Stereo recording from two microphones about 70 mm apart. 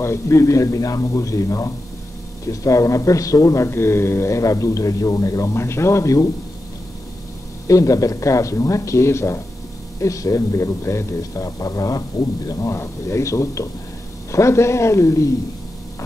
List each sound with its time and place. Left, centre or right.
0.0 s a man's voice: left
5.5 s a man's voice: left
7.6 s a man's voice: left